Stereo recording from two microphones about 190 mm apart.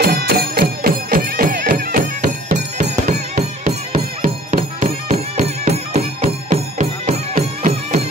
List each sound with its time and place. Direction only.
0.0 s music: 55° right (ahead or behind)
2.5 s music: 40° right (ahead or behind)